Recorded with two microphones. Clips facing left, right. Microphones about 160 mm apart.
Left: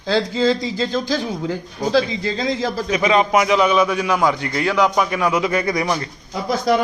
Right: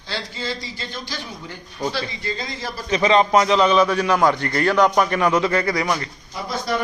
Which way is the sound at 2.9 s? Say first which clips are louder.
Right 1 dB; 10° left (ahead or behind).